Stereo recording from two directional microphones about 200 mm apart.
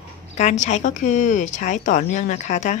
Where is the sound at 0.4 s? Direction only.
35° left (ahead or behind).